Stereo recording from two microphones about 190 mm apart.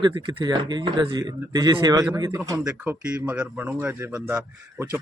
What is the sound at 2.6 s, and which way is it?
A man's voice, 5° right (ahead or behind).